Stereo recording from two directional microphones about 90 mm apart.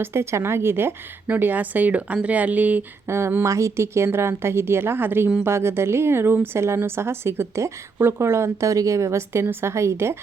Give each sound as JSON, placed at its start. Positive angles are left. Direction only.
{"t": 0.0, "sound": "a woman's voice", "side_deg": -30}
{"t": 3.1, "sound": "a woman's voice", "side_deg": -30}